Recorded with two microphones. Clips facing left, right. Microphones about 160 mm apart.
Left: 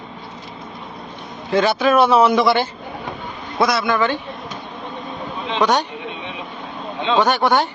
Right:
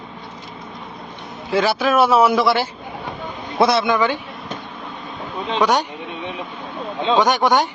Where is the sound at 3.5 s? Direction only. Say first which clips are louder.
Right 2 dB; 25° right (ahead or behind).